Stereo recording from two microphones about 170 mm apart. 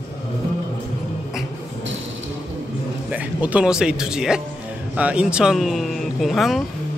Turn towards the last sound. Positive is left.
turn(degrees=0)  # may be behind; listen again after turning